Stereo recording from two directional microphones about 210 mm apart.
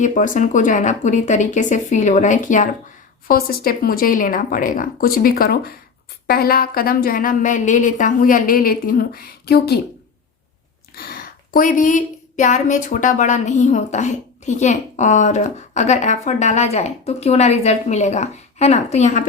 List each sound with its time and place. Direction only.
0.0 s speech: 40° left (ahead or behind)
10.9 s speech: 45° left (ahead or behind)